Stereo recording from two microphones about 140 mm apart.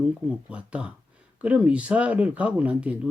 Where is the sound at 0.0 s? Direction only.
10° right (ahead or behind).